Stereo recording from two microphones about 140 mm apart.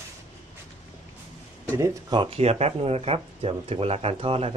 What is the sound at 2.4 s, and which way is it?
Speech, 50° right (ahead or behind).